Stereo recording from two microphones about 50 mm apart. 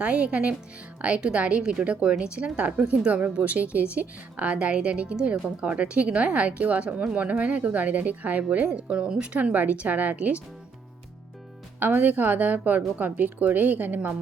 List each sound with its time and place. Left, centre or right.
0.0 s speech: right
11.8 s speech: right